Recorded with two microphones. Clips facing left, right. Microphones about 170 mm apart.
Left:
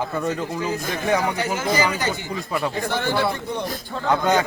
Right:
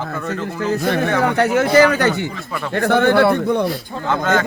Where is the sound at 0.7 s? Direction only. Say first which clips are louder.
Right 6 dB; 65° right (ahead or behind).